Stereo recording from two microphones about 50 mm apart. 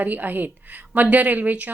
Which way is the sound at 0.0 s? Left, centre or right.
Right.